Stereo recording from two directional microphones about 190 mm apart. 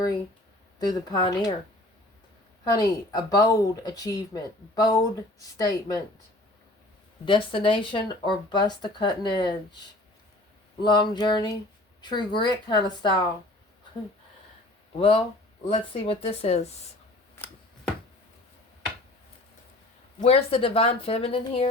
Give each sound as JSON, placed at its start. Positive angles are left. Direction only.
{"t": 0.8, "sound": "speech", "side_deg": 20}
{"t": 2.7, "sound": "speech", "side_deg": 20}
{"t": 7.3, "sound": "speech", "side_deg": 25}
{"t": 10.8, "sound": "speech", "side_deg": 25}
{"t": 14.9, "sound": "speech", "side_deg": 30}
{"t": 20.2, "sound": "speech", "side_deg": 30}